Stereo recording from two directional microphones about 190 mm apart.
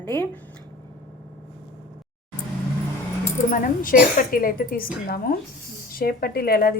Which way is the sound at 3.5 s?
45° left (ahead or behind).